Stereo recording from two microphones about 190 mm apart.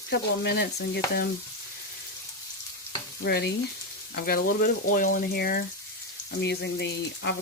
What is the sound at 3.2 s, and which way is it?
Speech, 55° left (ahead or behind).